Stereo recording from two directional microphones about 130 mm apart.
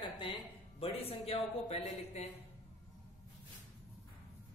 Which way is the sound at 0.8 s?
45° left (ahead or behind).